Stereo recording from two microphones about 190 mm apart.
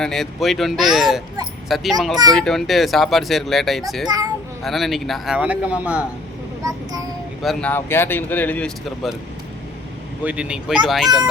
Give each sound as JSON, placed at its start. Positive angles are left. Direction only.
{"t": 0.0, "sound": "speech", "side_deg": 0}
{"t": 6.6, "sound": "child singing", "side_deg": -20}
{"t": 7.4, "sound": "speech", "side_deg": 10}
{"t": 10.2, "sound": "speech", "side_deg": -5}